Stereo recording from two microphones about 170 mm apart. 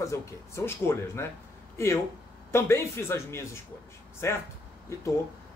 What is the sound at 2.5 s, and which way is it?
Speech, 15° left (ahead or behind).